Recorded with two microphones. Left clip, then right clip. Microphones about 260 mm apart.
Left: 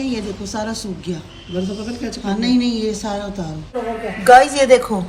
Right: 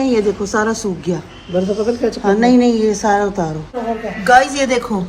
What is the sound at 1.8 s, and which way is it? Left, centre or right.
Speech, centre.